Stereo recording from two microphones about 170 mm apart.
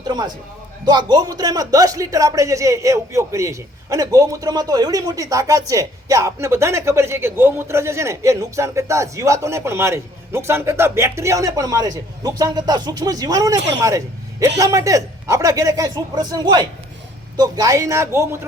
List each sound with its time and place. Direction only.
0.1 s speech: 25° right (ahead or behind)